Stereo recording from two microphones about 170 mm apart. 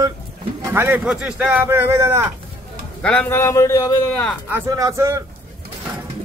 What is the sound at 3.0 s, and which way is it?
A man's voice, 10° left (ahead or behind).